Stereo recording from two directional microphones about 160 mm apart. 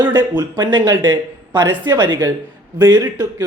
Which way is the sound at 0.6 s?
30° right (ahead or behind).